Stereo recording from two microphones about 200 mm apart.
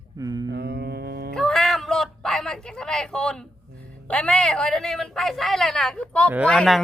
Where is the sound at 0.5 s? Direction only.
55° right (ahead or behind).